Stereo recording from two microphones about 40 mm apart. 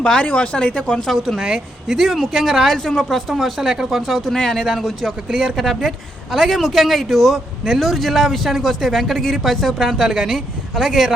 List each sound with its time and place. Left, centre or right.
0.0 s speech: left
1.0 s a man's voice: centre
1.4 s speech: centre
2.0 s a man's voice: centre
2.6 s a man's voice: centre
3.3 s speech: centre
4.2 s speech: centre
4.6 s a man's voice: centre
4.9 s speech: centre
5.3 s speech: centre
5.5 s a man's voice: centre